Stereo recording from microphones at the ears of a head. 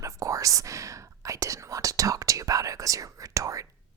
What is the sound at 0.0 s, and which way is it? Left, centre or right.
Speech, right.